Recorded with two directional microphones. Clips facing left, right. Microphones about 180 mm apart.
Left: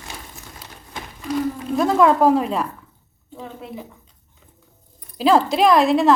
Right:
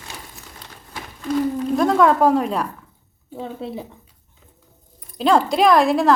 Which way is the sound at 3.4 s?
30° right (ahead or behind).